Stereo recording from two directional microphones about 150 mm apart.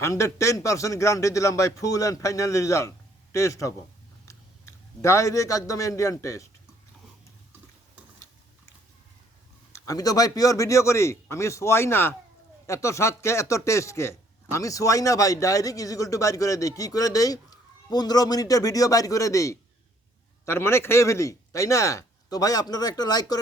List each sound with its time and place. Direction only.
0.0 s a man's voice: 20° left (ahead or behind)
9.7 s a man's voice: 20° left (ahead or behind)